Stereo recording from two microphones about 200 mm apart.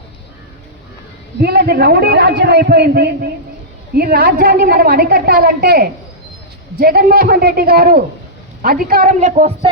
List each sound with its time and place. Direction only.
1.4 s a woman's voice: 55° right (ahead or behind); by 9.6 s 35° right (ahead or behind)